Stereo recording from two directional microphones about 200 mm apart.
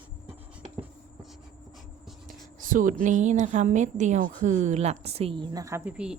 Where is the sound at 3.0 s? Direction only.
40° right (ahead or behind).